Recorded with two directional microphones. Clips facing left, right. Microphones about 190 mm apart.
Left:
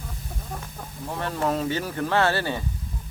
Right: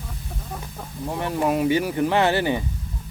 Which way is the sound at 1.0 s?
15° right (ahead or behind).